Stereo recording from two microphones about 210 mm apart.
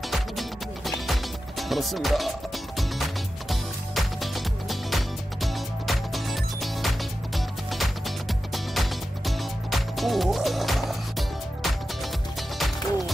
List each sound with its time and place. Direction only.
0.1 s music: centre (ahead or behind)
3.4 s music: centre (ahead or behind)